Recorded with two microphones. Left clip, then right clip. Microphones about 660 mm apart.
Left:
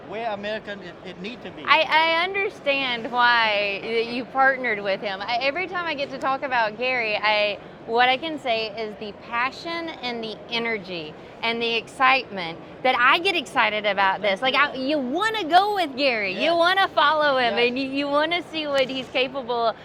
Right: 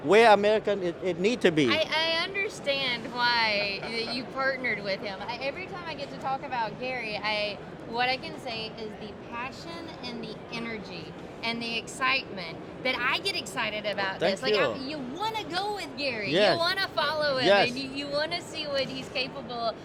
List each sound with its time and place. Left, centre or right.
0.1 s a man's voice: right
1.6 s a woman's voice: left